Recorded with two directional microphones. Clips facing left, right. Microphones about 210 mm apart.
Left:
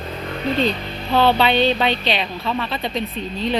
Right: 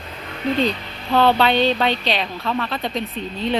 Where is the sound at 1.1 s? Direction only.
10° left (ahead or behind).